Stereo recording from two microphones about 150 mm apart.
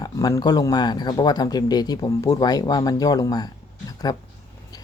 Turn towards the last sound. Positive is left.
turn(degrees=25)  # may be behind; listen again after turning